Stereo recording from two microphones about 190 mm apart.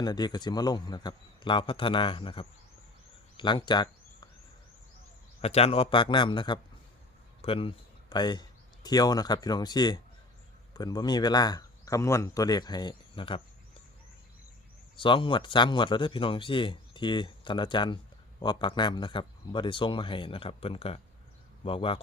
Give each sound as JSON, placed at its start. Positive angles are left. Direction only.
{"t": 0.0, "sound": "speech", "side_deg": 20}
{"t": 5.4, "sound": "speech", "side_deg": 35}
{"t": 14.9, "sound": "speech", "side_deg": 25}